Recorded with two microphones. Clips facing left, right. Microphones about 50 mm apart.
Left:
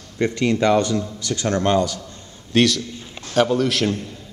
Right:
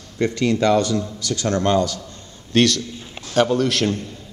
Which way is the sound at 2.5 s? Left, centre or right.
Centre.